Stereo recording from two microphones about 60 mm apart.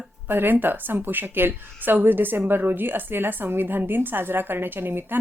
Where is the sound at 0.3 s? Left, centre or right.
Right.